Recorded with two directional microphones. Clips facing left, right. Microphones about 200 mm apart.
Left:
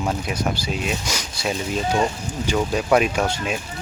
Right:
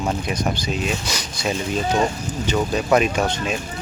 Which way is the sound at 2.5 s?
5° left (ahead or behind).